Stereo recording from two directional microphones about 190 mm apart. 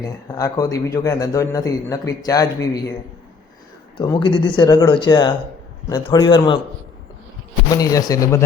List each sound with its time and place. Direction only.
0.0 s a man's voice: 20° left (ahead or behind)
3.9 s speech: 25° left (ahead or behind)
7.7 s speech: 20° left (ahead or behind)